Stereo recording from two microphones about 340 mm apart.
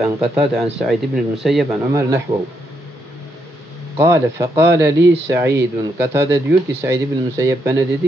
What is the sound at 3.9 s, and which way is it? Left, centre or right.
Speech, centre.